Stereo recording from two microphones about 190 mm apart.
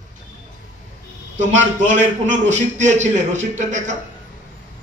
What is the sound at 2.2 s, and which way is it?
A man's voice, 40° right (ahead or behind).